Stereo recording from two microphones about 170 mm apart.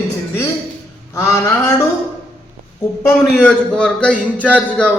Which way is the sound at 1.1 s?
15° left (ahead or behind).